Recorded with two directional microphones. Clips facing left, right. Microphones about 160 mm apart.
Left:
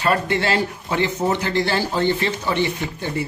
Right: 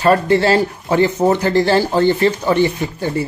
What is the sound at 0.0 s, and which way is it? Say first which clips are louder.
A man's voice: right 7 dB; 35° right (ahead or behind).